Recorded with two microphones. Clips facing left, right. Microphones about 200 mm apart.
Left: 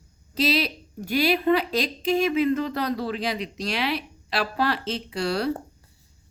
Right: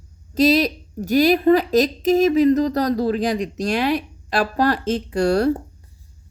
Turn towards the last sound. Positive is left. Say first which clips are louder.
# right 8 dB
turn(degrees=-45)  # may be behind; listen again after turning